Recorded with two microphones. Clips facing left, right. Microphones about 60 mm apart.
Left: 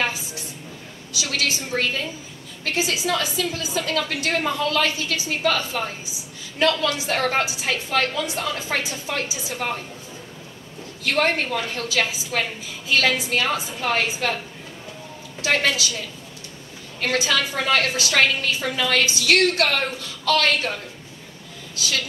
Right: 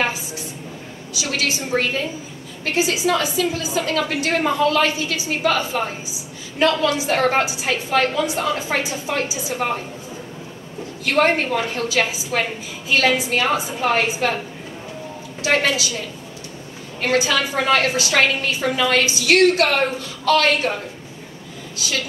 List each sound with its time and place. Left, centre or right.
1.1 s a woman's voice: right
11.1 s a woman's voice: right
15.4 s a woman's voice: right
17.0 s a woman's voice: right